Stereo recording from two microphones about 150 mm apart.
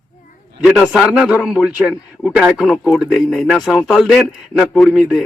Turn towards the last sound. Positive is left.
turn(degrees=-5)  # may be behind; listen again after turning